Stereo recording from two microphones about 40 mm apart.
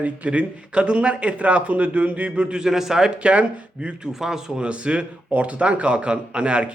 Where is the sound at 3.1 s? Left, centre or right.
Right.